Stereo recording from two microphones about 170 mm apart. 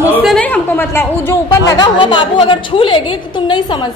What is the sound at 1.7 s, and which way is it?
A woman's voice, 30° left (ahead or behind).